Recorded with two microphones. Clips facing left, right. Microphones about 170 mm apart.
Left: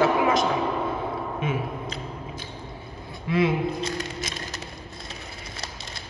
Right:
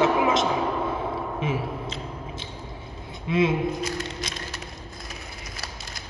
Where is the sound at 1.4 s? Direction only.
30° right (ahead or behind).